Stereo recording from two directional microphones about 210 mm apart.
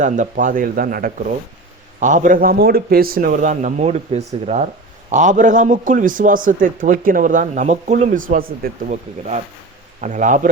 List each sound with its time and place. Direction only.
0.0 s a man's voice: 40° right (ahead or behind)